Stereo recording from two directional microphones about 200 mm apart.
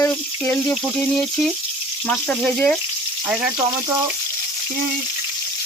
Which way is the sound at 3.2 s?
5° right (ahead or behind).